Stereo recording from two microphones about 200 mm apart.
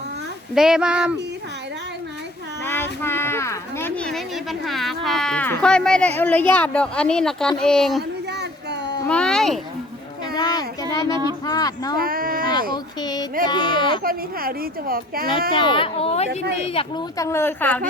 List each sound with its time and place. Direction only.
0.5 s speech: 5° right (ahead or behind)
2.6 s speech: 10° left (ahead or behind)
8.3 s a sound: 60° right (ahead or behind)
9.0 s speech: 5° left (ahead or behind)
10.3 s child singing: 20° left (ahead or behind)
11.4 s speech: 20° left (ahead or behind)
11.9 s a sound: 45° right (ahead or behind)
12.7 s speech: 20° left (ahead or behind)
14.0 s a woman's voice: 45° right (ahead or behind)
15.5 s speech: 25° left (ahead or behind); by 17.8 s 10° left (ahead or behind)